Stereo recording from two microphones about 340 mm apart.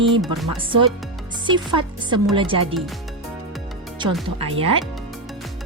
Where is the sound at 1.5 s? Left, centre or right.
Centre.